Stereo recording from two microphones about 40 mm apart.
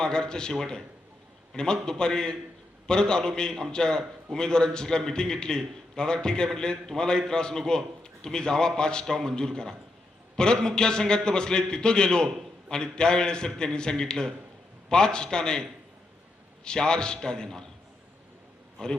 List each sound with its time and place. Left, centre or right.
0.0 s a man's voice: centre
1.5 s a man's voice: centre
16.6 s a man's voice: left